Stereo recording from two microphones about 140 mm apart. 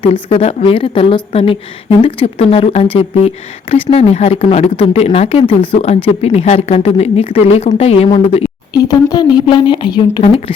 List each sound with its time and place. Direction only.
0.0 s a woman's voice: 40° left (ahead or behind)
8.7 s a woman's voice: 25° left (ahead or behind)